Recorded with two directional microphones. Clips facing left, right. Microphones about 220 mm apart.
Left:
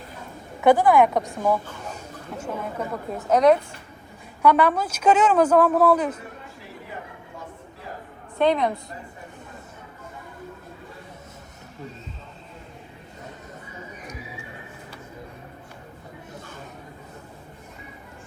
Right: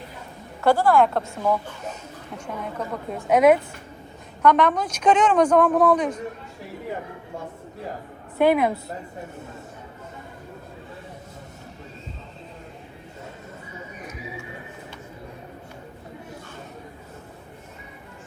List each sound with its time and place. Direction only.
0.6 s speech: 20° left (ahead or behind)
2.4 s a woman's voice: 5° left (ahead or behind)
4.4 s speech: 10° left (ahead or behind)
8.4 s a woman's voice: 5° right (ahead or behind)